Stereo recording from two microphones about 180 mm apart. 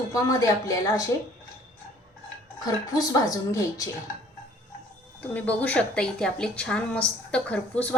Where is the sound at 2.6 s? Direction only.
20° left (ahead or behind).